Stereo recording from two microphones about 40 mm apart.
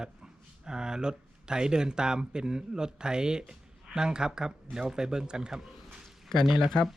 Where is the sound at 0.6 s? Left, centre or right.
Centre.